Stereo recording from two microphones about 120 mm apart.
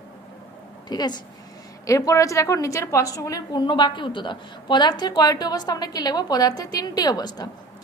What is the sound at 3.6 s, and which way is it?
A woman's voice, 40° left (ahead or behind).